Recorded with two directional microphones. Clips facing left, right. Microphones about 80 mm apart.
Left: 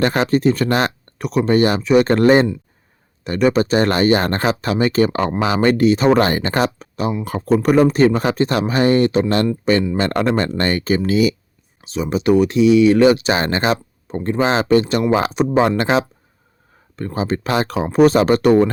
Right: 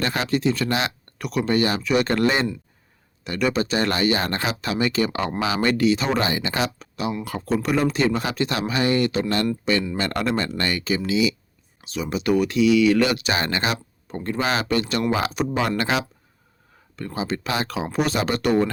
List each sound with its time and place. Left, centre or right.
0.0 s speech: left
11.8 s speech: left